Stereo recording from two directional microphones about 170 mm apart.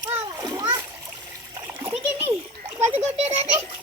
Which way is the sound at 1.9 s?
35° right (ahead or behind).